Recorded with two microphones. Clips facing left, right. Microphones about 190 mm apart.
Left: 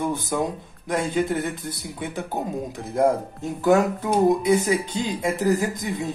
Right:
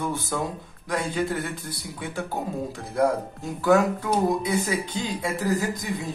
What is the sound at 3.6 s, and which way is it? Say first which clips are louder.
Speech: left 1 dB; 20° left (ahead or behind).